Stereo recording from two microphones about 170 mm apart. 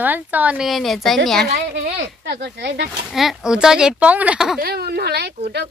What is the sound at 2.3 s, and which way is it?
Speech, 85° right.